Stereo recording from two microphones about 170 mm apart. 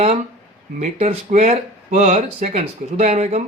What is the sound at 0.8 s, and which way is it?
Speech, 35° right (ahead or behind).